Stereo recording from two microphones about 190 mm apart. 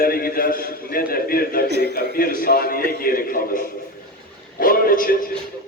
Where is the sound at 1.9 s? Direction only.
50° left (ahead or behind).